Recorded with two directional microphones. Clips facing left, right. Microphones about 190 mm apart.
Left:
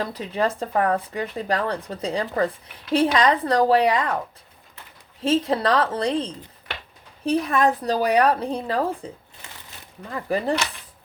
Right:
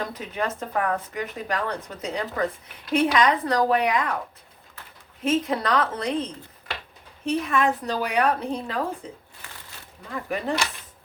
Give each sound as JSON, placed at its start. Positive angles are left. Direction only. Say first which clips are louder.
{"t": 0.1, "sound": "speech", "louder": "left 5 dB", "side_deg": 30}
{"t": 5.2, "sound": "speech", "louder": "left 3 dB", "side_deg": 30}
{"t": 10.2, "sound": "speech", "louder": "left 5 dB", "side_deg": 35}